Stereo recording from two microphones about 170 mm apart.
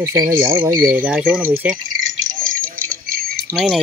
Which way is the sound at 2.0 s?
55° right (ahead or behind).